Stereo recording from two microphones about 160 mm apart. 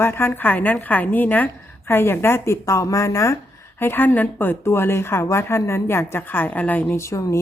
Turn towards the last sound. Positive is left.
turn(degrees=20)  # may be behind; listen again after turning